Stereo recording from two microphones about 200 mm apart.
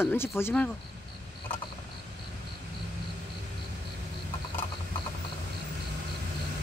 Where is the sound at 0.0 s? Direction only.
10° left (ahead or behind).